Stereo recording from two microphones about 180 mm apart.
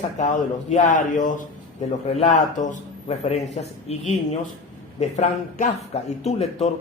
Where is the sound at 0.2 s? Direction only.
45° left (ahead or behind).